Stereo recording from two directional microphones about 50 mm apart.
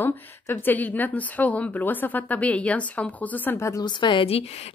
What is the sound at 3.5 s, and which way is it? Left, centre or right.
Speech, left.